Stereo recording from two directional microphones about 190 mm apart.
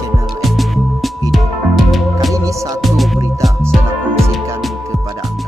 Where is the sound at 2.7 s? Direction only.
Centre (ahead or behind).